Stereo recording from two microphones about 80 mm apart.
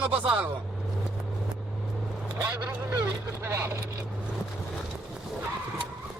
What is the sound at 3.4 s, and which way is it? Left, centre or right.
Speech, right.